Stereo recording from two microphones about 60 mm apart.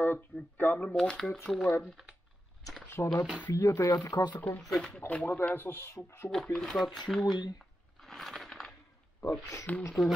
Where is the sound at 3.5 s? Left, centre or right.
Left.